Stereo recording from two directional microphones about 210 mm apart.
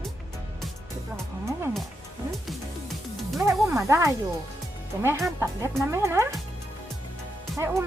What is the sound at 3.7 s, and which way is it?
Speech, 15° right (ahead or behind).